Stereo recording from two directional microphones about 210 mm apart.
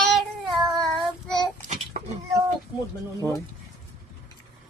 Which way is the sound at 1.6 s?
35° right (ahead or behind).